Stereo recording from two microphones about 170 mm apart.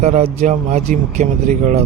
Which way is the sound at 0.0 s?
40° right (ahead or behind).